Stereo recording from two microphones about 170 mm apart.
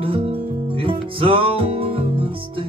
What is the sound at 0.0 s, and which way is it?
Music, 30° right (ahead or behind).